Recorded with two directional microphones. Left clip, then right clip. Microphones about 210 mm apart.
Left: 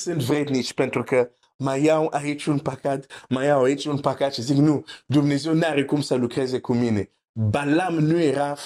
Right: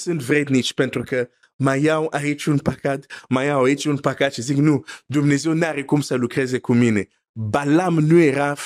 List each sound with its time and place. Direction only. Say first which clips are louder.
0.3 s speech: right 4 dB; 55° right (ahead or behind)
0.7 s speech: left 1 dB; 40° right (ahead or behind)